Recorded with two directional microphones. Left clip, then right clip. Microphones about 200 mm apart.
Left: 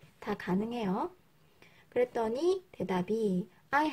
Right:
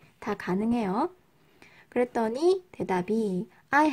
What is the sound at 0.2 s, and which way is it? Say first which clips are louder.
Speech: right 4 dB; 25° right (ahead or behind).